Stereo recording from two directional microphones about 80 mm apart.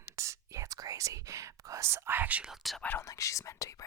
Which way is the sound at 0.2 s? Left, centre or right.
Right.